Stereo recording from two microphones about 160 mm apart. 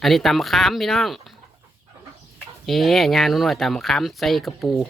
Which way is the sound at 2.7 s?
Centre (ahead or behind).